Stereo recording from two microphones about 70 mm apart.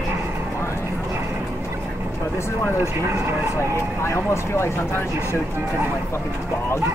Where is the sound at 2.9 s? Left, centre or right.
Right.